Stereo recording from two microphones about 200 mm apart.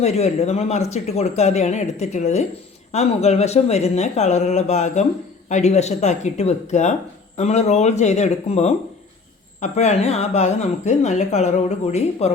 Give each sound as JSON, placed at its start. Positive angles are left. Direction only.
{"t": 0.0, "sound": "speech", "side_deg": 30}